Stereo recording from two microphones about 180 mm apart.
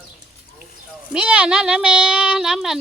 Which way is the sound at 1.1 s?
5° right (ahead or behind).